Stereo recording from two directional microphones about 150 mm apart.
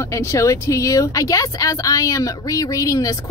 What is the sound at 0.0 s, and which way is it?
Speech, 20° left (ahead or behind).